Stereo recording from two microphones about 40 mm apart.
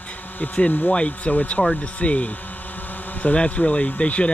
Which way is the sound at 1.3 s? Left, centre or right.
Left.